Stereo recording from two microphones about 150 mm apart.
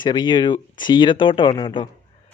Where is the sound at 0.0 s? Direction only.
30° left (ahead or behind).